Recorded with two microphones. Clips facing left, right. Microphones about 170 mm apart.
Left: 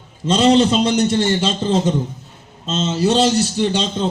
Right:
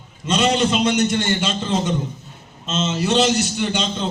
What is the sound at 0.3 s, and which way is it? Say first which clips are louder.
A man's voice: left 5 dB; 30° left (ahead or behind).